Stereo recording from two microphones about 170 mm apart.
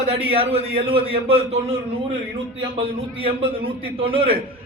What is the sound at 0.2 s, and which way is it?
A man's voice, 35° right (ahead or behind).